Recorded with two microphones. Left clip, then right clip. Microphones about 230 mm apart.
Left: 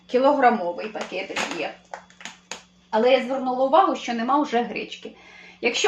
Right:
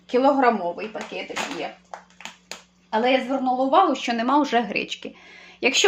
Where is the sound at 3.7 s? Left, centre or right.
Right.